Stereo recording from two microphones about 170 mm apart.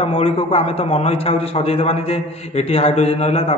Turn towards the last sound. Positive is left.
turn(degrees=35)  # may be behind; listen again after turning